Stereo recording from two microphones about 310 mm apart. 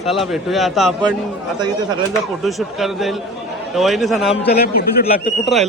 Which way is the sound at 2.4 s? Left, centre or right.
Centre.